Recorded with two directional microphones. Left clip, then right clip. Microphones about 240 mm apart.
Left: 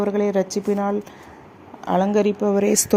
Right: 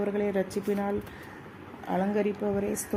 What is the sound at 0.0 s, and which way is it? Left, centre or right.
Speech, left.